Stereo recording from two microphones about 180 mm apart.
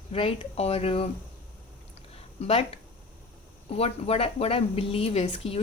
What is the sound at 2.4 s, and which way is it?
Speech, 30° left (ahead or behind).